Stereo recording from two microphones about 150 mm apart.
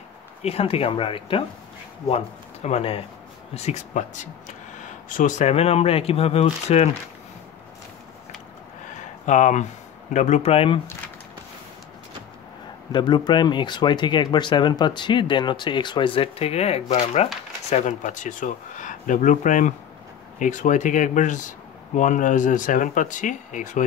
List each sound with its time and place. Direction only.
0.4 s speech: 45° left (ahead or behind)
9.2 s speech: 50° left (ahead or behind)
12.9 s speech: 30° left (ahead or behind); by 23.8 s 55° left (ahead or behind)